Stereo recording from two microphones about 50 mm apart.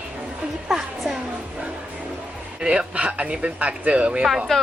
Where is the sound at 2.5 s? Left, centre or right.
Right.